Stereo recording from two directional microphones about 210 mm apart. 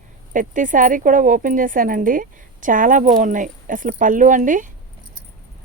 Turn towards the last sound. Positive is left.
turn(degrees=-40)  # may be behind; listen again after turning